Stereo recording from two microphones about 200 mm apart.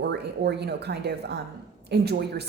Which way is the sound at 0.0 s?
55° right (ahead or behind).